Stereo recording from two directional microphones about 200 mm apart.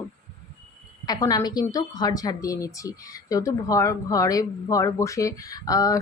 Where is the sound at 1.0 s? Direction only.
20° left (ahead or behind).